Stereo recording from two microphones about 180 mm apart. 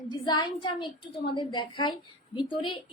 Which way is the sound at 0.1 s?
25° left (ahead or behind).